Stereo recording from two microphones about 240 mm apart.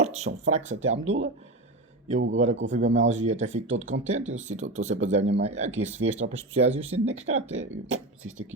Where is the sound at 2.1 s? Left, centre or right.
Right.